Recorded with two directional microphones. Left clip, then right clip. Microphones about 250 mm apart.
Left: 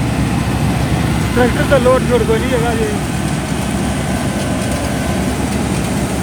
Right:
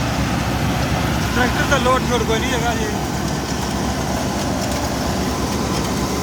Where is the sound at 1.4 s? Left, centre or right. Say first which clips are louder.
Left 5 dB; centre.